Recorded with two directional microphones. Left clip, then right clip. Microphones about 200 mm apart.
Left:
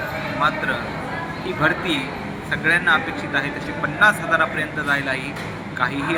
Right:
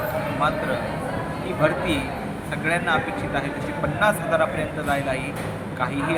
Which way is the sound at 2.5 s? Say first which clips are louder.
Left 5 dB; 5° right (ahead or behind).